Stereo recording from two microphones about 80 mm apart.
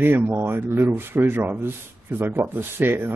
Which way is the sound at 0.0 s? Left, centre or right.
Right.